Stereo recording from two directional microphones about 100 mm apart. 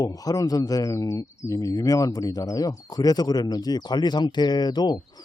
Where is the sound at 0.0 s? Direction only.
40° left (ahead or behind).